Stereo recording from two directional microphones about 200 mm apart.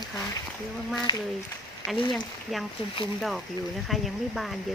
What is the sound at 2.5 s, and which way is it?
Speech, centre (ahead or behind).